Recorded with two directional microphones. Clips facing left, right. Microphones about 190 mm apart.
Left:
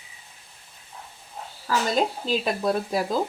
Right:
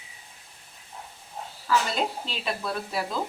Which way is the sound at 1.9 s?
40° left (ahead or behind).